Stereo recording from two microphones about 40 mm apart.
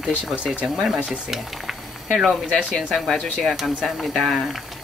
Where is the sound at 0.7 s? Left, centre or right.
Centre.